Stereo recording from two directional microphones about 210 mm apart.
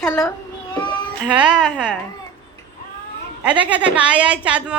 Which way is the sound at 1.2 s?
5° right (ahead or behind).